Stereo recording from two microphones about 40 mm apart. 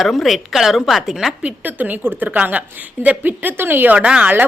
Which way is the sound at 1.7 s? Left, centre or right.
Right.